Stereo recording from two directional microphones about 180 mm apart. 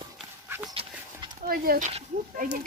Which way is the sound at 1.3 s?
55° right (ahead or behind).